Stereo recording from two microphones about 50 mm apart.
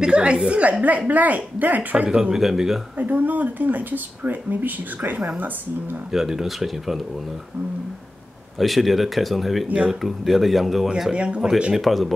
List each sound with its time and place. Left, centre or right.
0.0 s speech: centre
2.3 s speech: centre
3.0 s speech: right
5.1 s speech: centre
6.1 s speech: centre
8.5 s speech: centre
11.1 s speech: right
11.8 s speech: centre